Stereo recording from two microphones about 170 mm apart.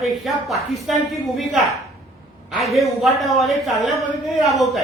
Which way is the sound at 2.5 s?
Centre (ahead or behind).